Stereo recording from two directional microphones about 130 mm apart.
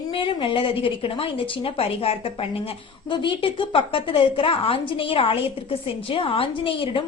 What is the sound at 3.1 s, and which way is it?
A woman's voice, 40° left (ahead or behind).